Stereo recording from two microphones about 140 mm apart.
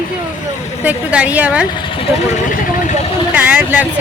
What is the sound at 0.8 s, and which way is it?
Speech, 10° right (ahead or behind).